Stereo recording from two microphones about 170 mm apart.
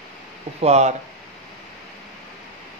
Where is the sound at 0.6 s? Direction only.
40° right (ahead or behind).